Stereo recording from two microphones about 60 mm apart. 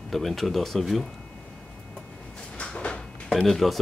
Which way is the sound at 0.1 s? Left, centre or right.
Centre.